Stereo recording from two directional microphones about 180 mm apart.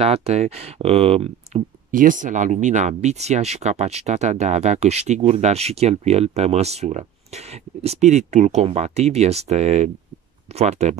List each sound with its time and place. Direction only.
0.0 s speech: 35° right (ahead or behind)
1.9 s speech: 50° right (ahead or behind)